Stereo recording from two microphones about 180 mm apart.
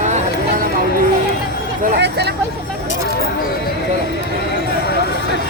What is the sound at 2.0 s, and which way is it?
Vehicle, 70° right (ahead or behind).